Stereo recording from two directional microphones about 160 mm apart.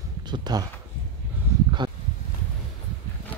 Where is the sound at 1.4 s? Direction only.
10° right (ahead or behind).